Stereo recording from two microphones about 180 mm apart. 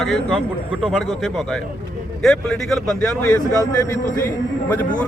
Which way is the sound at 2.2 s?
Centre (ahead or behind).